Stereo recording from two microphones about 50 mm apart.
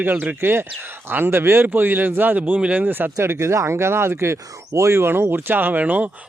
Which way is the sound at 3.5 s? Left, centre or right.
Right.